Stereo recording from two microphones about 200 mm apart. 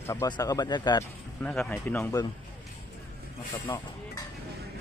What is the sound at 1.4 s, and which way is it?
Speech, 10° left (ahead or behind).